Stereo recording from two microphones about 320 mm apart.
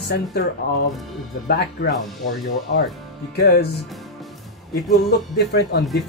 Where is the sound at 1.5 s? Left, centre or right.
Left.